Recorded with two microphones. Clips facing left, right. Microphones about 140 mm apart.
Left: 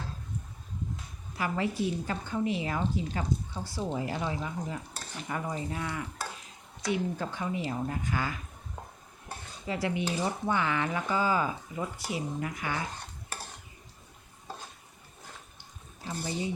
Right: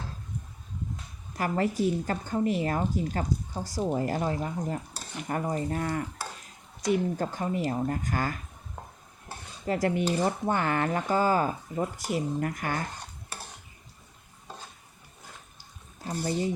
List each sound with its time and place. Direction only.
1.4 s speech: 45° right (ahead or behind)
9.6 s speech: 45° right (ahead or behind)
16.0 s speech: 45° right (ahead or behind)